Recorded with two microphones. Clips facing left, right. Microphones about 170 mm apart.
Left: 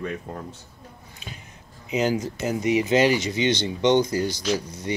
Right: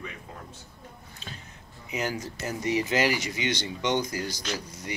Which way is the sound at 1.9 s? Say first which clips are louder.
Left 8 dB; 20° left (ahead or behind).